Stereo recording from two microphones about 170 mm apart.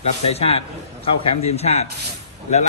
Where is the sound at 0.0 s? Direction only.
35° left (ahead or behind).